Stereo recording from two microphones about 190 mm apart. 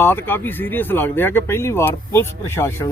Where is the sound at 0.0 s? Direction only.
10° left (ahead or behind).